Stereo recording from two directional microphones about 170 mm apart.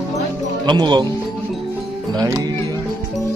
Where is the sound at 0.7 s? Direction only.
25° right (ahead or behind).